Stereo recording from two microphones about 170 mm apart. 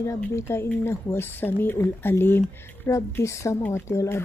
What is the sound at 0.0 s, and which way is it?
Speech, 15° left (ahead or behind).